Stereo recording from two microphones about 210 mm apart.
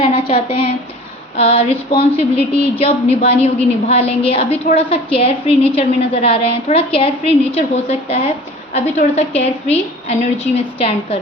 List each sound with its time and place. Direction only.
0.0 s a woman's voice: 30° left (ahead or behind)